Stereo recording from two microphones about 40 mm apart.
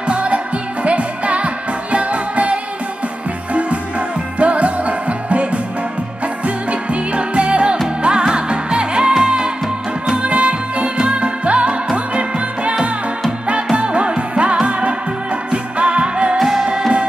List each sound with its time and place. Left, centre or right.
0.0 s music: right
4.4 s music: right
13.7 s music: right
16.3 s music: centre